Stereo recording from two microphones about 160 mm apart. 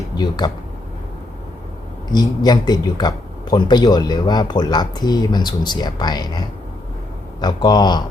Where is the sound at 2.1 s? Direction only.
25° left (ahead or behind).